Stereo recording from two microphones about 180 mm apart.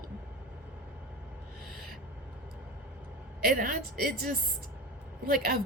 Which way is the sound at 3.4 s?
55° right (ahead or behind).